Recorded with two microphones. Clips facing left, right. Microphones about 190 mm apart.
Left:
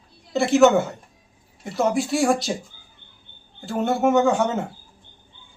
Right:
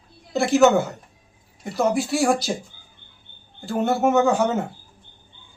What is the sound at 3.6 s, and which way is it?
Speech, centre (ahead or behind).